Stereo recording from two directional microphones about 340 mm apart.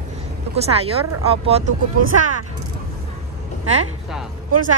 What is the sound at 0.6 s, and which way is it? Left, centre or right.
Speech, centre.